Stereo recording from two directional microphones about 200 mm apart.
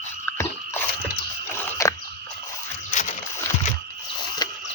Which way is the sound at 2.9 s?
35° left (ahead or behind).